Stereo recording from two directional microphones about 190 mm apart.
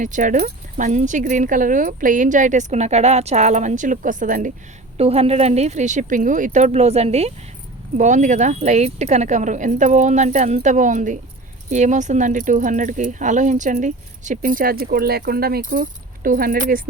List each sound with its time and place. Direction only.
0.0 s speech: 40° right (ahead or behind)
4.9 s speech: 30° right (ahead or behind); by 16.8 s 50° right (ahead or behind)